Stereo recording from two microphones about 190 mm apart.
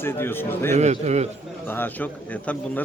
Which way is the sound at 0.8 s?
35° right (ahead or behind).